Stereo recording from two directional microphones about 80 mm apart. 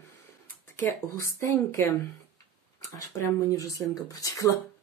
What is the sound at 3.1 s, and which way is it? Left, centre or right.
Speech, left.